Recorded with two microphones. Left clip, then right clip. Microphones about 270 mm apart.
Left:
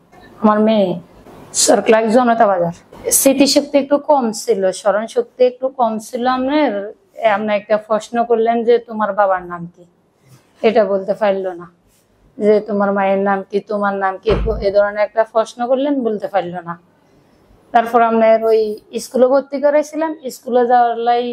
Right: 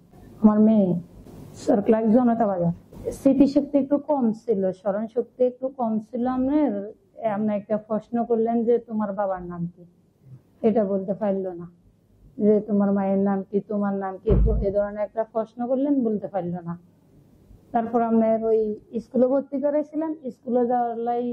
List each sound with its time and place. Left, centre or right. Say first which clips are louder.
0.4 s a woman's voice: left 8 dB; centre
0.9 s a sound: left 4 dB; left
1.5 s a woman's voice: left 10 dB; centre
5.6 s speech: left 11 dB; left
5.9 s a woman's voice: left 10 dB; centre